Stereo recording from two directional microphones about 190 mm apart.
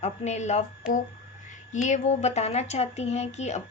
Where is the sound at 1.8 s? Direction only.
35° left (ahead or behind).